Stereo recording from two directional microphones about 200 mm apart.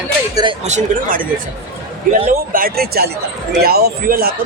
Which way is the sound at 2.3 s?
45° right (ahead or behind).